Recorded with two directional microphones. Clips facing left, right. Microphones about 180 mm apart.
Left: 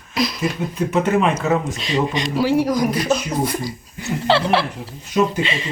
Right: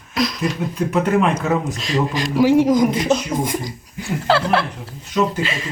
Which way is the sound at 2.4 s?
20° right (ahead or behind).